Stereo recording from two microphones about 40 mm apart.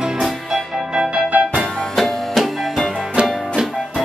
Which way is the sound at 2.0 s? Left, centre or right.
Centre.